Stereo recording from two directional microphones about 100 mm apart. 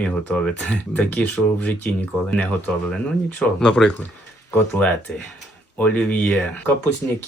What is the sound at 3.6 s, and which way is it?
Speech, 5° left (ahead or behind).